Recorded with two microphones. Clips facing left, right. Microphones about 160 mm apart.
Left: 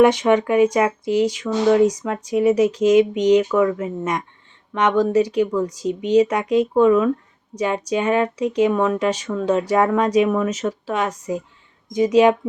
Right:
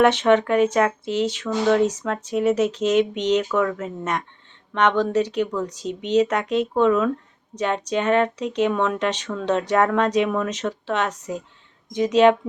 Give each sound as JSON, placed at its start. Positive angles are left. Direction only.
{"t": 0.0, "sound": "speech", "side_deg": 10}